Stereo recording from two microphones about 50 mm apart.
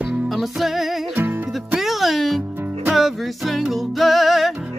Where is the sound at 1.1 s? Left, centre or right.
Right.